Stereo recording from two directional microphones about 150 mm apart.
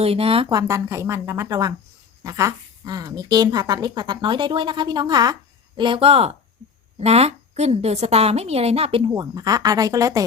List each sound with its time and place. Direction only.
0.0 s speech: 40° right (ahead or behind)
0.5 s a woman's voice: 20° right (ahead or behind); by 9.0 s 40° right (ahead or behind)
9.0 s speech: 25° right (ahead or behind)